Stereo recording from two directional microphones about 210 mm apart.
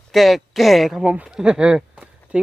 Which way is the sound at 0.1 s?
Centre (ahead or behind).